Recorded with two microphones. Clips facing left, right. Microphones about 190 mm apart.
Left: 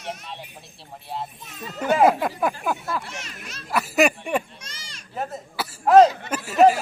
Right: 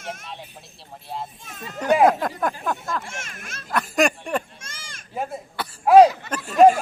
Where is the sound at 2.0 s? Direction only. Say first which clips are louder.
Left 2 dB; 5° left (ahead or behind).